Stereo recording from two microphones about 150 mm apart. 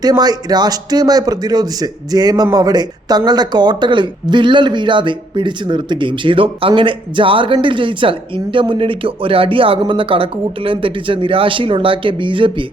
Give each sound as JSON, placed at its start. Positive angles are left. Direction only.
{"t": 0.0, "sound": "speech", "side_deg": -25}